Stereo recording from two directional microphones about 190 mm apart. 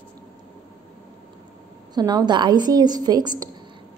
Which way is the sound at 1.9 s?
20° right (ahead or behind).